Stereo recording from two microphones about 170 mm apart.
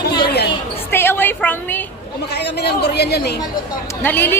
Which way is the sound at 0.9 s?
15° left (ahead or behind).